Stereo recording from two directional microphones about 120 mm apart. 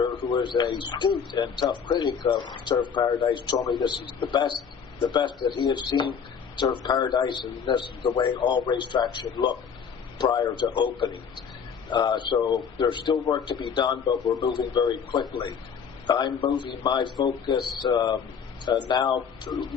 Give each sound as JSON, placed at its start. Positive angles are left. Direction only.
{"t": 0.0, "sound": "a man's voice", "side_deg": 40}